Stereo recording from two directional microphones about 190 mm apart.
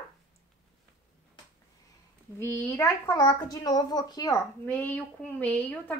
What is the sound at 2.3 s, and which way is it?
Speech, 10° left (ahead or behind).